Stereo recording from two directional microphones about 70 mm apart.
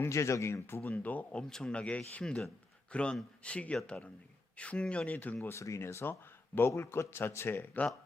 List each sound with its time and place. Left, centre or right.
0.0 s speech: left
0.8 s speech: left
5.1 s speech: left
5.5 s speech: left
6.7 s speech: left